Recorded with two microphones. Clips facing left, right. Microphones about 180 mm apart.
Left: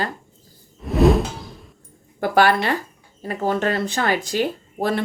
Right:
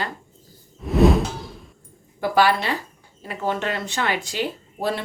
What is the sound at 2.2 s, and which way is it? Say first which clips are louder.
A woman's voice: left 2 dB; 50° left (ahead or behind).